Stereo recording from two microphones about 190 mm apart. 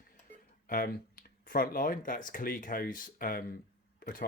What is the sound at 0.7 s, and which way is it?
Speech, 50° left (ahead or behind).